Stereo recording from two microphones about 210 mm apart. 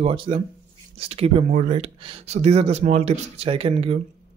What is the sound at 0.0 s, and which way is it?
Speech, 25° right (ahead or behind).